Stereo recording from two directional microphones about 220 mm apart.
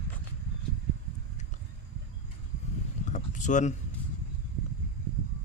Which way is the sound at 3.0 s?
35° left (ahead or behind).